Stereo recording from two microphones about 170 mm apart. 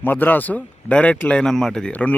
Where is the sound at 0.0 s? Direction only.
10° left (ahead or behind).